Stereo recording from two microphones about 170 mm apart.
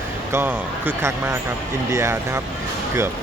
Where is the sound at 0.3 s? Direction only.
10° right (ahead or behind).